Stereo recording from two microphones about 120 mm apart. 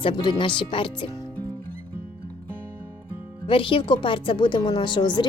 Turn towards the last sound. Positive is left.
turn(degrees=40)  # may be behind; listen again after turning